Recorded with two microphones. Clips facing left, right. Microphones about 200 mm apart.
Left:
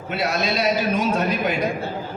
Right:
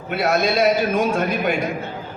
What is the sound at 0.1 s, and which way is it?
A man's voice, 50° right (ahead or behind).